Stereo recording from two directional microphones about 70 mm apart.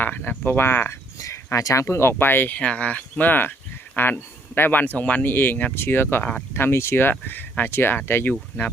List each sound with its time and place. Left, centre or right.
0.0 s speech: left
1.2 s speech: left
2.6 s speech: centre
8.3 s speech: centre